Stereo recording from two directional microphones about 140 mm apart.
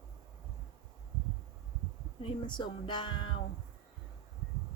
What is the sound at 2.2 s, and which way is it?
Music, 35° left (ahead or behind).